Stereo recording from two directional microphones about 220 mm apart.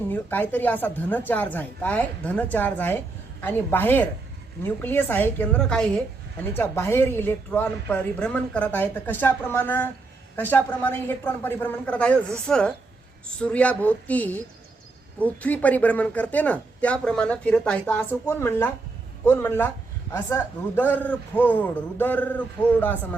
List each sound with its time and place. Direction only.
0.1 s a man's voice: 10° left (ahead or behind)